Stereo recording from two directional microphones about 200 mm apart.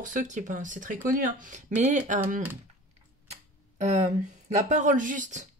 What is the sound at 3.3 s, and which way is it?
Tick-tock, 35° right (ahead or behind).